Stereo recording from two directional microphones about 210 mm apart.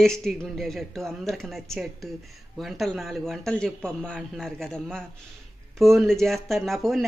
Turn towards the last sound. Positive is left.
turn(degrees=0)  # may be behind; listen again after turning